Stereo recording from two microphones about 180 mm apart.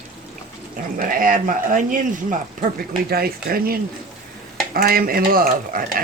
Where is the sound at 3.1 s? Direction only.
60° right (ahead or behind).